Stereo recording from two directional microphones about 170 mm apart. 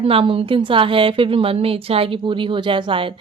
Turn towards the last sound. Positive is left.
turn(degrees=-30)  # may be behind; listen again after turning